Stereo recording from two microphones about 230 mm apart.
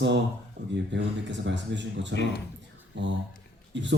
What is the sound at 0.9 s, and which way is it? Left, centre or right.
Speech, right.